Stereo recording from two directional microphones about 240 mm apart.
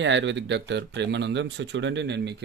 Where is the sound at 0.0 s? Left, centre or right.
Right.